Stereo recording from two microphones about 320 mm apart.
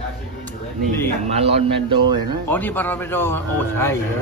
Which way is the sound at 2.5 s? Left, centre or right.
Centre.